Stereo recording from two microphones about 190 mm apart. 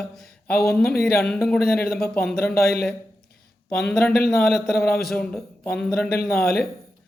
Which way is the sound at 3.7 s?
5° left (ahead or behind).